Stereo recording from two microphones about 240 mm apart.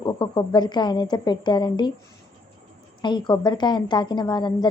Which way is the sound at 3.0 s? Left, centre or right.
Centre.